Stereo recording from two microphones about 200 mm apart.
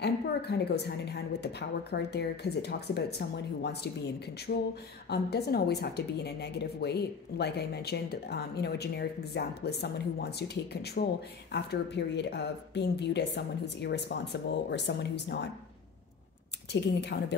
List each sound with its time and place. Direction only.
0.0 s a woman's voice: 55° left (ahead or behind)
4.5 s a sound: 55° left (ahead or behind)
5.1 s a woman's voice: 55° left (ahead or behind)
16.7 s a woman's voice: 60° left (ahead or behind)